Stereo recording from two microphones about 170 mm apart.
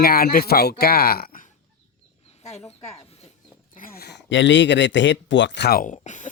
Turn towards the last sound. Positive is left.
turn(degrees=45)  # may be behind; listen again after turning